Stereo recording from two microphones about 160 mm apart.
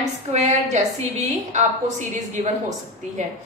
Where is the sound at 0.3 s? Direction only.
45° right (ahead or behind).